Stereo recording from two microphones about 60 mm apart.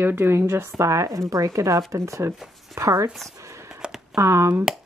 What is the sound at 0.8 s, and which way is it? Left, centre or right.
Speech, right.